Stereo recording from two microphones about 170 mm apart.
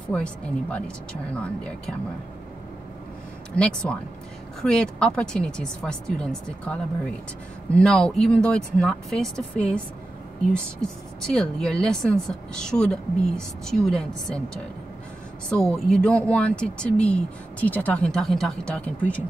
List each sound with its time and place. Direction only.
0.1 s speech: 5° left (ahead or behind)
3.5 s speech: 5° left (ahead or behind)